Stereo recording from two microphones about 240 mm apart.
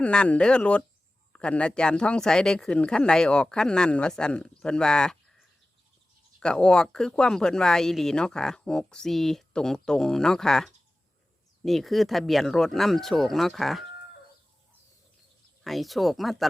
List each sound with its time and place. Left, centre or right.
0.0 s speech: centre
6.4 s speech: centre
15.6 s speech: centre